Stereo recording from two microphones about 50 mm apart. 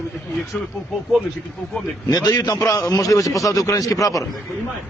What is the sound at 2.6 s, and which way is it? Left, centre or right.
Speech, left.